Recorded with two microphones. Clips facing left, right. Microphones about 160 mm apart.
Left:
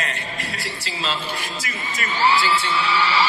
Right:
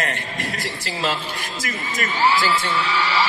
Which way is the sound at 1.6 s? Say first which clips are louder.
Right 3 dB; 45° right (ahead or behind).